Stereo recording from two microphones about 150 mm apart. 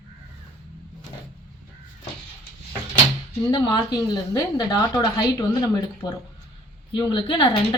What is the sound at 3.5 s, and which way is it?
Speech, 30° left (ahead or behind).